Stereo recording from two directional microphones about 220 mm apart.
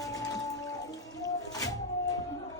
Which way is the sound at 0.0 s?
15° left (ahead or behind).